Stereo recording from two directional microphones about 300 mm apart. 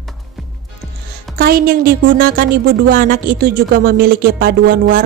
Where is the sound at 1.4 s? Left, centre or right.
Right.